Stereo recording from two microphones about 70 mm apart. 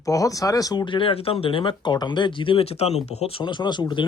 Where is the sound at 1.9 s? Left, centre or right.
Left.